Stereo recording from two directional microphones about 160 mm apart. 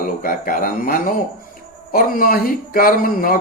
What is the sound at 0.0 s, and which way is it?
Speech, 60° left (ahead or behind).